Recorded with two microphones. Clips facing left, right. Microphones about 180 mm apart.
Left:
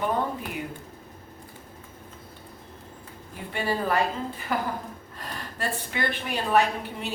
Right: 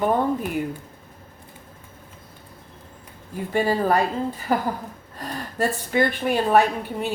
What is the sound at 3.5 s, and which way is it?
A woman's voice, 40° right (ahead or behind).